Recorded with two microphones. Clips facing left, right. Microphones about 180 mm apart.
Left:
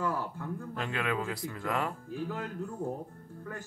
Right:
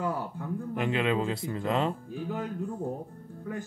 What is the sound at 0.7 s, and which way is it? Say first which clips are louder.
Speech: right 6 dB; 20° right (ahead or behind).